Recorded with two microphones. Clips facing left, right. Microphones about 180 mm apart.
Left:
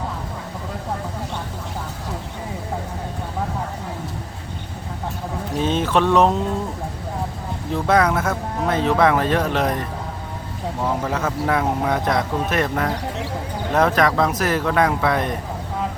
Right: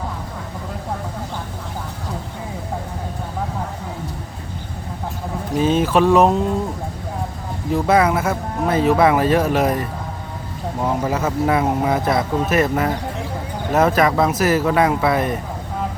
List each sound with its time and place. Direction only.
5.5 s speech: 5° right (ahead or behind)
7.7 s speech: 5° right (ahead or behind)
10.8 s speech: 10° right (ahead or behind)